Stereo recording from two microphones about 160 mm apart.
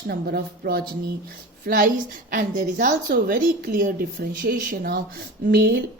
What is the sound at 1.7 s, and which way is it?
A woman's voice, 60° right (ahead or behind).